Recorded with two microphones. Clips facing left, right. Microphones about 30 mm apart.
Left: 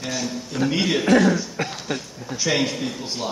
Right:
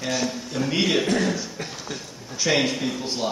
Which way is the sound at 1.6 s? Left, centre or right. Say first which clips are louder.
Left 7 dB; left.